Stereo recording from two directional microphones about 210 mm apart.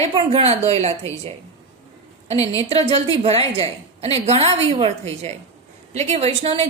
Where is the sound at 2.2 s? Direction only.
15° left (ahead or behind).